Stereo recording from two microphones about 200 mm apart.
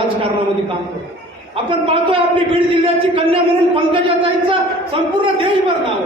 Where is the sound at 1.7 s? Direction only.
25° right (ahead or behind).